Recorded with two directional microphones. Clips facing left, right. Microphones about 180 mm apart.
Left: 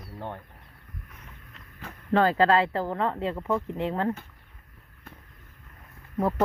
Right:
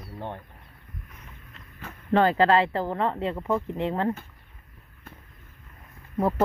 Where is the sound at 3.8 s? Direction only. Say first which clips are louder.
Right 1 dB; 25° right (ahead or behind).